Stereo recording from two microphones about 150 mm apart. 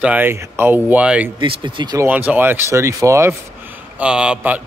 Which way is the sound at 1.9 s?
10° right (ahead or behind).